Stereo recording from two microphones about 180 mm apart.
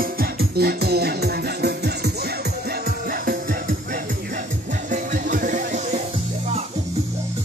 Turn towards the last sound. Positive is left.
turn(degrees=-40)  # may be behind; listen again after turning